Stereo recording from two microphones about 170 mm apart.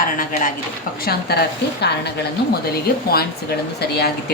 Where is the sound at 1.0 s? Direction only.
70° left (ahead or behind).